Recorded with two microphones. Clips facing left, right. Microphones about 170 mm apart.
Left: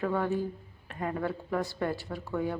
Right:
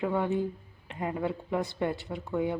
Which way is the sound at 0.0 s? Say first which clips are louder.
Right 1 dB; 20° right (ahead or behind).